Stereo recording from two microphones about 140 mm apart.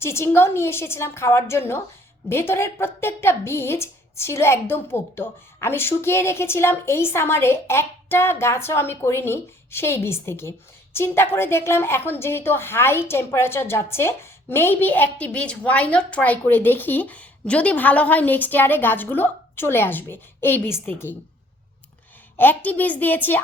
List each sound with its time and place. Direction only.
0.0 s a woman's voice: 20° left (ahead or behind)
22.4 s a woman's voice: 10° left (ahead or behind)